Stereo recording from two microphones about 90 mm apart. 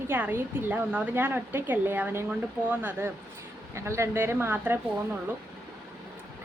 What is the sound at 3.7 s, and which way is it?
Speech, 30° right (ahead or behind).